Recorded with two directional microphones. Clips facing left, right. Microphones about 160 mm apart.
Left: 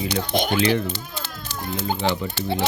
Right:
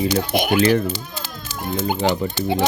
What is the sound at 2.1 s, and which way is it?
Speech, 15° right (ahead or behind).